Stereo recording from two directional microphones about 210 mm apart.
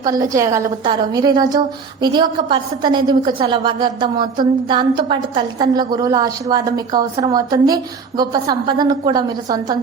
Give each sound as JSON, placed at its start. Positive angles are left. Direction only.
{"t": 0.0, "sound": "a woman's voice", "side_deg": -15}